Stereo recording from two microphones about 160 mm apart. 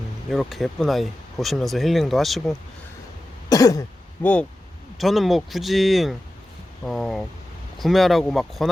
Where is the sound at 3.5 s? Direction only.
20° left (ahead or behind).